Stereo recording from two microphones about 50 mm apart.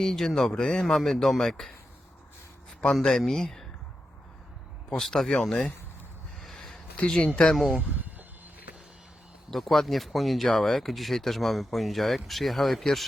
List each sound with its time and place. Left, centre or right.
0.0 s speech: centre
2.9 s speech: centre
4.9 s speech: centre
6.6 s a sound: centre
7.5 s speech: centre
9.5 s speech: centre